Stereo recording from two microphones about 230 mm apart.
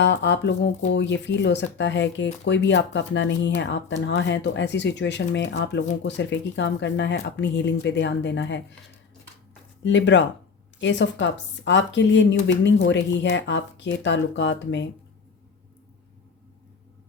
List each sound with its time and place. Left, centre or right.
0.0 s speech: left
9.8 s speech: left